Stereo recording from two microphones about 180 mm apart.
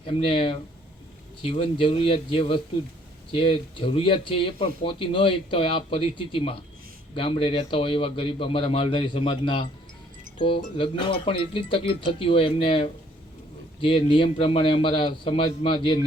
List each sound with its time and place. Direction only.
0.0 s speech: 30° left (ahead or behind)